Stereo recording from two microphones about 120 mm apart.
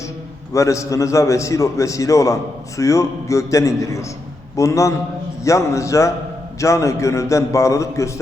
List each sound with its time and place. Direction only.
0.5 s a man's voice: 25° left (ahead or behind)